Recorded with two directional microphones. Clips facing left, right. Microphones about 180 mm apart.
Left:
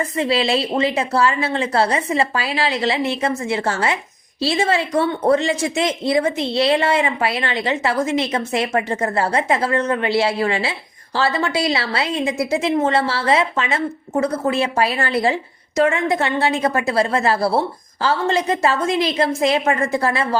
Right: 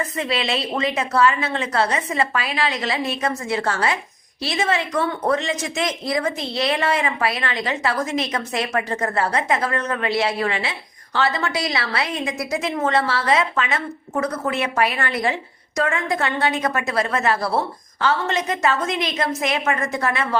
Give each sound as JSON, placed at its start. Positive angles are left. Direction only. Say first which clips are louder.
{"t": 0.0, "sound": "a woman's voice", "louder": "left 5 dB", "side_deg": 30}